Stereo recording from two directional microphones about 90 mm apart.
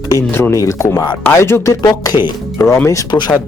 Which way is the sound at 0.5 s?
35° left (ahead or behind).